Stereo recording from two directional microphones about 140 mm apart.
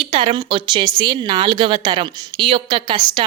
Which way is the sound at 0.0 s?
40° right (ahead or behind).